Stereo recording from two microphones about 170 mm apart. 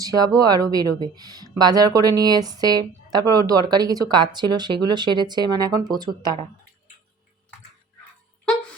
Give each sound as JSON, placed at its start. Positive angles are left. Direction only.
{"t": 0.0, "sound": "speech", "side_deg": -20}